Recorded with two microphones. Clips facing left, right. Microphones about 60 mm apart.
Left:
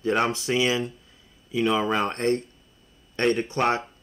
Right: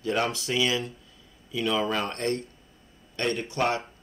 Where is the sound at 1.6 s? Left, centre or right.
Centre.